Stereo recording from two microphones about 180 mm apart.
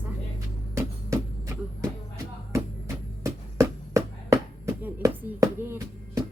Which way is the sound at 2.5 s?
15° right (ahead or behind).